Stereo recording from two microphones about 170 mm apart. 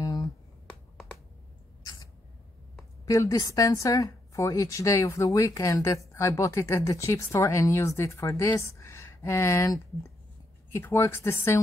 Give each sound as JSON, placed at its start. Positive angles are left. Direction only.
{"t": 0.0, "sound": "finger snapping", "side_deg": 20}
{"t": 3.1, "sound": "a woman's voice", "side_deg": 20}